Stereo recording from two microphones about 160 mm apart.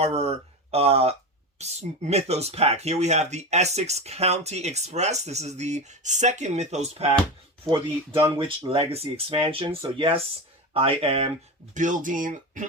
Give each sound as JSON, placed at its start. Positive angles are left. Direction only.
{"t": 0.0, "sound": "speech", "side_deg": -40}
{"t": 11.7, "sound": "speech", "side_deg": -50}